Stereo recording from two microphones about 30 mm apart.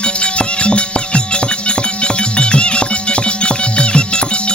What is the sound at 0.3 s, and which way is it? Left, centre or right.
Music, left.